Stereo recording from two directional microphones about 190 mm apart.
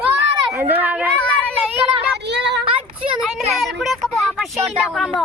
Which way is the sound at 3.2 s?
Centre (ahead or behind).